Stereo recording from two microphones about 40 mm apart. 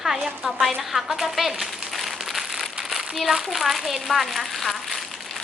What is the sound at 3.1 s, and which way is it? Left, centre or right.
A woman's voice, centre.